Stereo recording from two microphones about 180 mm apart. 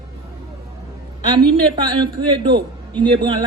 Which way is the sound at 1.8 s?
25° right (ahead or behind).